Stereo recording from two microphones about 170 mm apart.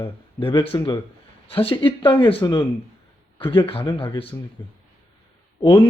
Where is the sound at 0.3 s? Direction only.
30° left (ahead or behind).